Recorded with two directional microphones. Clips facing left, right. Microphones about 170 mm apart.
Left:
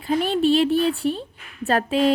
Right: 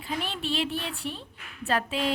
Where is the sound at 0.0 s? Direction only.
40° left (ahead or behind).